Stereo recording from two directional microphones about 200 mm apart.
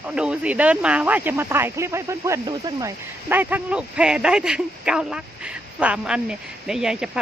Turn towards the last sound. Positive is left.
turn(degrees=-5)  # may be behind; listen again after turning